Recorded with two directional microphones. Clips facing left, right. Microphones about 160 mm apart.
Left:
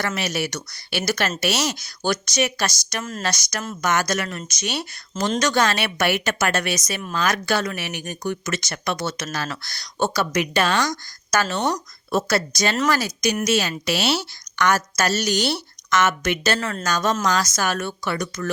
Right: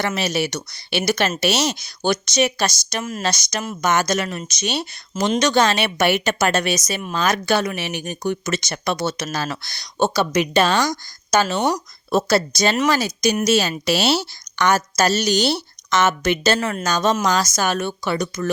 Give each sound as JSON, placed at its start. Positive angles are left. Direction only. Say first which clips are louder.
{"t": 0.0, "sound": "a woman's voice", "louder": "right 3 dB", "side_deg": -30}
{"t": 11.4, "sound": "speech", "louder": "right 3 dB", "side_deg": -5}
{"t": 12.1, "sound": "a woman's voice", "louder": "right 4 dB", "side_deg": -30}